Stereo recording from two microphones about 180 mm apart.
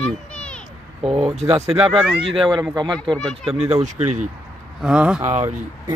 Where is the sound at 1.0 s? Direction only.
30° right (ahead or behind).